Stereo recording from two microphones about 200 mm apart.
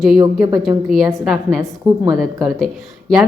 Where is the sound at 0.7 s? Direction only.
15° right (ahead or behind).